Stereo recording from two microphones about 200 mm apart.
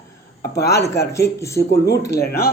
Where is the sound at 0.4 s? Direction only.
55° left (ahead or behind).